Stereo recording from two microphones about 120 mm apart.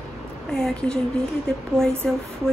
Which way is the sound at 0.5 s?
5° left (ahead or behind).